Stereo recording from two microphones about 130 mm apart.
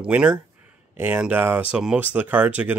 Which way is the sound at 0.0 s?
10° right (ahead or behind).